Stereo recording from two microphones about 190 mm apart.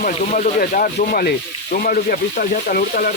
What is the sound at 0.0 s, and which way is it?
Speech, 40° left (ahead or behind).